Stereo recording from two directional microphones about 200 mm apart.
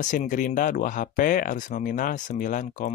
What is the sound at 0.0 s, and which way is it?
Speech, 40° left (ahead or behind).